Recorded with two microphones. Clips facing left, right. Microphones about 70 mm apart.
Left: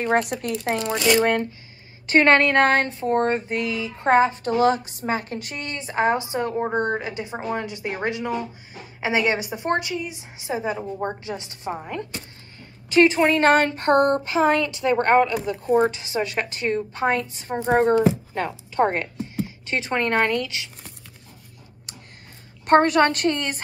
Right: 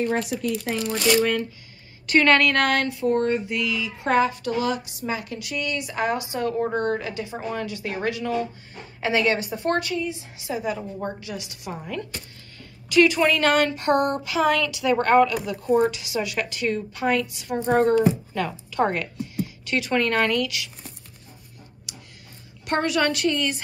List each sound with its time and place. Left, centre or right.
0.0 s a woman's voice: left
21.9 s tick: left
22.7 s speech: left